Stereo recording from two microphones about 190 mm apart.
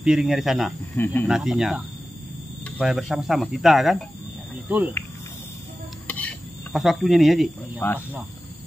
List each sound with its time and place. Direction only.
0.0 s speech: 5° right (ahead or behind)
0.9 s speech: 10° left (ahead or behind)
1.2 s speech: centre (ahead or behind)
4.6 s insect: 10° right (ahead or behind)
6.0 s cricket: 5° left (ahead or behind)